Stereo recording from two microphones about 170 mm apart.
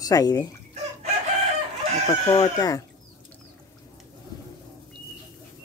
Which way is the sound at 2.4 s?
20° left (ahead or behind).